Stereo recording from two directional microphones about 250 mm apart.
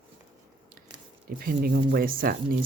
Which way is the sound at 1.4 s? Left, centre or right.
Right.